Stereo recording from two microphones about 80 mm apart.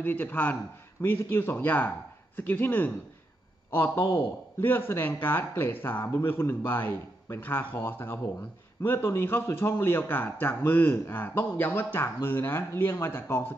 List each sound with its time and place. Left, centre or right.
0.0 s a man's voice: left
4.1 s a man's voice: left